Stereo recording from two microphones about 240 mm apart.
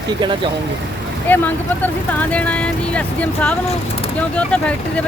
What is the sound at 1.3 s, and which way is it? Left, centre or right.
Speech, centre.